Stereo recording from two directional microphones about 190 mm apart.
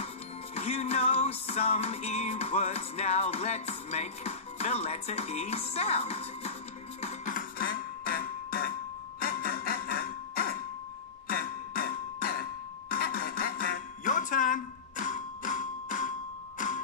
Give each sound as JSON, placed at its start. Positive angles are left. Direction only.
{"t": 0.6, "sound": "music", "side_deg": 35}